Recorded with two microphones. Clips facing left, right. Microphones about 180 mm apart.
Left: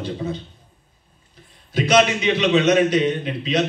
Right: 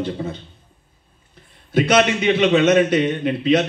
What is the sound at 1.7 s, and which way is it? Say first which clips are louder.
A man's voice: right 1 dB; 55° right (ahead or behind).